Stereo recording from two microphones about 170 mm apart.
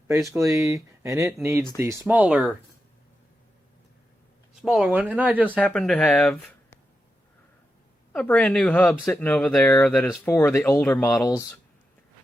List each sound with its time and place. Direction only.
0.3 s speech: 15° right (ahead or behind)
4.5 s speech: 5° right (ahead or behind)
5.5 s speech: 5° left (ahead or behind)
8.1 s speech: 5° left (ahead or behind)